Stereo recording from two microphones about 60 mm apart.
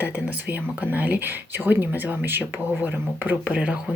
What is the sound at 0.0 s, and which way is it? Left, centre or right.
Speech, right.